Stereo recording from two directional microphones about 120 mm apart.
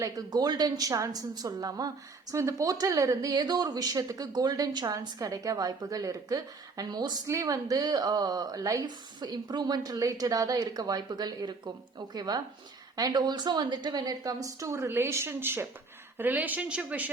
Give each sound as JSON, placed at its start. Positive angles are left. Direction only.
{"t": 0.0, "sound": "a woman's voice", "side_deg": -30}